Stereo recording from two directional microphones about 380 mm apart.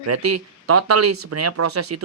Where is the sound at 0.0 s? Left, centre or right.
Right.